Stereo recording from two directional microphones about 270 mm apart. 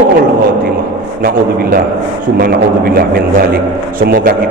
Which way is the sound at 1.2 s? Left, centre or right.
Right.